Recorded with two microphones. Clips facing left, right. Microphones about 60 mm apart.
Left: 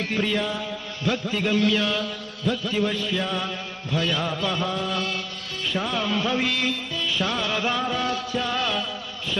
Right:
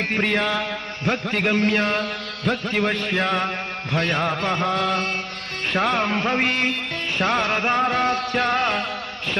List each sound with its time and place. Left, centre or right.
0.1 s a man's voice: right
3.9 s music: right